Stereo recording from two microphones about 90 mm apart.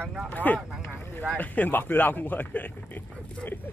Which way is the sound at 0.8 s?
20° left (ahead or behind).